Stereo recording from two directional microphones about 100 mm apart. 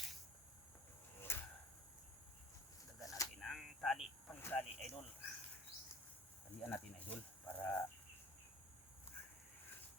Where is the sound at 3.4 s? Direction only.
Centre (ahead or behind).